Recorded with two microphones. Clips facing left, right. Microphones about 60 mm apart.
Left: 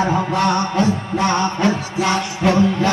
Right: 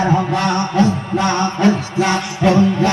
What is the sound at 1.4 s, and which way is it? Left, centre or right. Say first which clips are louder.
Music: right 3 dB; right.